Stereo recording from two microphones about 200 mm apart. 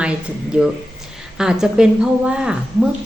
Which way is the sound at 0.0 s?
5° right (ahead or behind).